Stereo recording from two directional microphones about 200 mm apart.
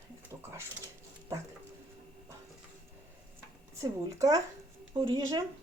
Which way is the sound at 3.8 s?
15° right (ahead or behind).